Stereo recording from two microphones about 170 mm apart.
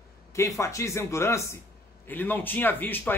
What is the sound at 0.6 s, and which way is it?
Speech, 15° left (ahead or behind).